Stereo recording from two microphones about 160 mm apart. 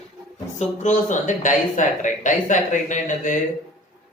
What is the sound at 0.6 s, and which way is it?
Speech, 50° left (ahead or behind).